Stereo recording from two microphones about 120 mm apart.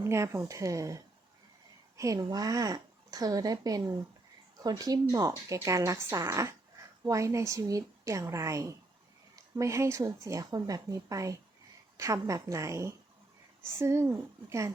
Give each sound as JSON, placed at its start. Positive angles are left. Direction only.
{"t": 0.0, "sound": "a woman's voice", "side_deg": -20}